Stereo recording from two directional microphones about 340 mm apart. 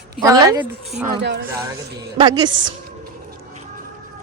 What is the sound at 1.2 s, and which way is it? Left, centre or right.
Speech, right.